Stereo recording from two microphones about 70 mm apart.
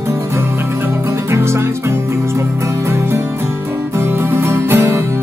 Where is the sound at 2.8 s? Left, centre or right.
Right.